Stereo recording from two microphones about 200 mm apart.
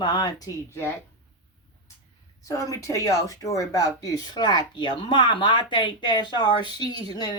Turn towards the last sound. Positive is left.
turn(degrees=20)  # may be behind; listen again after turning